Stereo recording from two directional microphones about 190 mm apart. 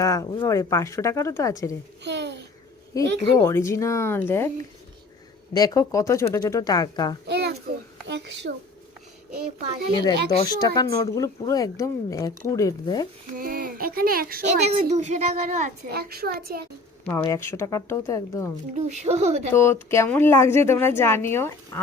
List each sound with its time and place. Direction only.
0.0 s a woman's voice: 20° left (ahead or behind)
2.0 s a child's voice: 65° right (ahead or behind)
2.9 s a woman's voice: 15° left (ahead or behind)
5.5 s speech: 20° left (ahead or behind)
7.3 s a sound: 65° right (ahead or behind)
8.0 s a child's voice: 65° right (ahead or behind)
10.2 s speech: 20° left (ahead or behind)
13.4 s a child's voice: 50° right (ahead or behind)
14.8 s speech: 35° right (ahead or behind)
15.9 s a child's voice: 55° right (ahead or behind)
17.2 s a woman's voice: 15° left (ahead or behind)
18.7 s speech: 35° right (ahead or behind)
19.5 s a woman's voice: 15° left (ahead or behind)